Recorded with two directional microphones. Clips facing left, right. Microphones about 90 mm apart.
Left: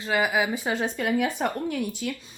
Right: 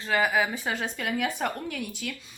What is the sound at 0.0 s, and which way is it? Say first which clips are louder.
Speech: left 1 dB; 10° left (ahead or behind).